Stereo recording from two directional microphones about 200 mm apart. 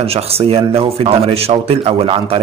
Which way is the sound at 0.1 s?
30° right (ahead or behind).